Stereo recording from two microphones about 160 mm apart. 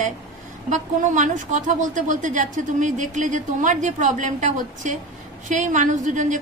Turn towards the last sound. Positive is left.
turn(degrees=-50)  # may be behind; listen again after turning